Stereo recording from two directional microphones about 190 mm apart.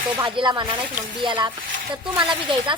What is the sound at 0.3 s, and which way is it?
Speech, 25° right (ahead or behind).